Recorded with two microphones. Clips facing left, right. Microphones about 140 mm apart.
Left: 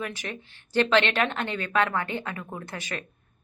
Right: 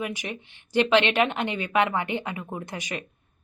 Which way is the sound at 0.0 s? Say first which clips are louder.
Right 2 dB; 15° right (ahead or behind).